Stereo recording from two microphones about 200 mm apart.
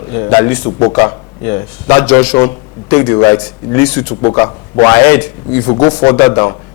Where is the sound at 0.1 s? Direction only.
20° left (ahead or behind).